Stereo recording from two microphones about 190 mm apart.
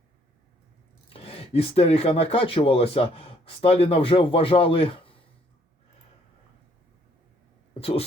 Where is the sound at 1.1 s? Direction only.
30° left (ahead or behind).